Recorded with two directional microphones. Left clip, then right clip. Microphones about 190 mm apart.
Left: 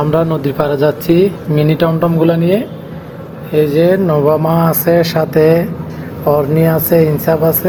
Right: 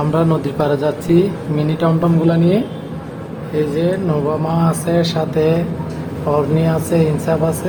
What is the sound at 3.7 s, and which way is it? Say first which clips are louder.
Speech: left 7 dB; 30° left (ahead or behind).